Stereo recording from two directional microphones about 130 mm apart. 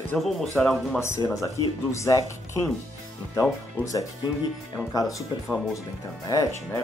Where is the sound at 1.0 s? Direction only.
20° left (ahead or behind).